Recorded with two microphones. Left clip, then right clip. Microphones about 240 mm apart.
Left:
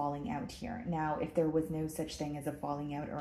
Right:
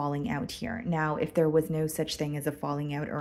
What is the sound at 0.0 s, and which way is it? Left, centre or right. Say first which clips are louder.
Speech: right 5 dB; right.